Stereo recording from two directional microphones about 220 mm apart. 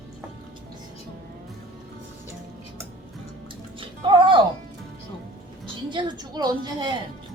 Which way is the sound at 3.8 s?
20° right (ahead or behind).